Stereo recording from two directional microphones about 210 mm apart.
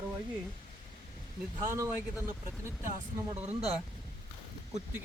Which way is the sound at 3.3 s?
30° right (ahead or behind).